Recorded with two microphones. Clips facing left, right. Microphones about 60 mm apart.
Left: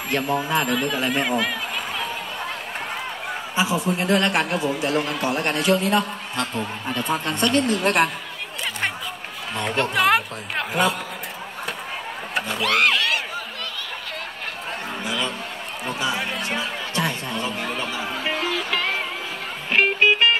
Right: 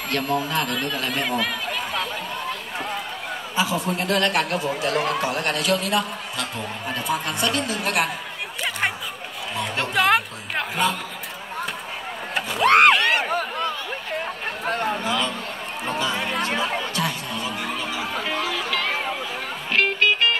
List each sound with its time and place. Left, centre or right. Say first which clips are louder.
0.1 s a man's voice: left 2 dB; centre
3.6 s a man's voice: left 1 dB; left
4.9 s speech: right 1 dB; right
5.3 s a man's voice: left 2 dB; left
9.8 s speech: left 1 dB; centre
12.4 s a sound: right 1 dB; centre
12.6 s speech: right 6 dB; right
12.9 s a sound: right 3 dB; right
13.6 s a sound: right 5 dB; right
15.0 s a sound: right 2 dB; centre
16.0 s music: left 1 dB; centre
16.9 s chatter: left 1 dB; left
17.7 s music: even; left